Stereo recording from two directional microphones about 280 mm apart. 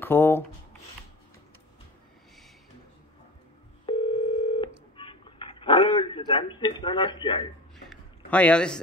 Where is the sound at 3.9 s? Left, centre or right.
Centre.